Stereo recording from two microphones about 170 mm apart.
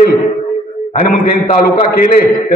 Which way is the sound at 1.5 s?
55° left (ahead or behind).